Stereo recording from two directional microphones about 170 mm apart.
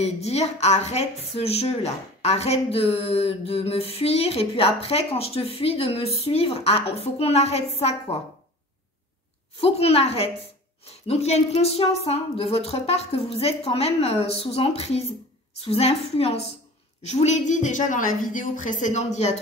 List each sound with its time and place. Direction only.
0.0 s a woman's voice: 40° left (ahead or behind)
9.6 s a woman's voice: 35° left (ahead or behind)